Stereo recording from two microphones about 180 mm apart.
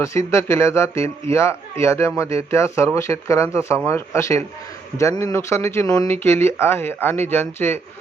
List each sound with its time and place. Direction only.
0.0 s speech: 15° left (ahead or behind)